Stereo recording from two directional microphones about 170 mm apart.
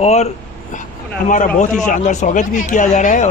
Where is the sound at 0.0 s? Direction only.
40° left (ahead or behind).